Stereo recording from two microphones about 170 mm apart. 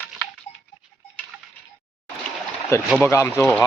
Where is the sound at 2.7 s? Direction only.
15° left (ahead or behind).